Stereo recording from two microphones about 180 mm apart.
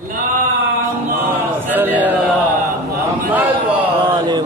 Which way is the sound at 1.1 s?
10° right (ahead or behind).